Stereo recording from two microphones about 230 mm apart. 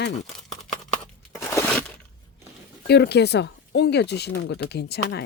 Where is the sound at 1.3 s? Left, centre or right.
Centre.